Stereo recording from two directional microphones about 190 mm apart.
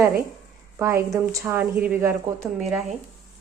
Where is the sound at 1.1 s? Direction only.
15° right (ahead or behind).